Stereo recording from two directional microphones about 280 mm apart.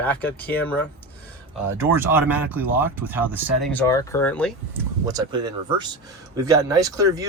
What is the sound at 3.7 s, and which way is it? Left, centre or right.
Speech, centre.